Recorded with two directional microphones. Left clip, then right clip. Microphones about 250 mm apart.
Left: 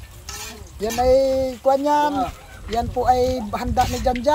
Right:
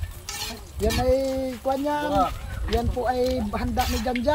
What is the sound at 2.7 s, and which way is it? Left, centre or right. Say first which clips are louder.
Speech: left 6 dB; centre.